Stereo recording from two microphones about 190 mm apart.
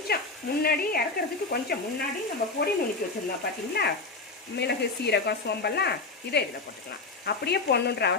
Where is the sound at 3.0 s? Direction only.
50° left (ahead or behind).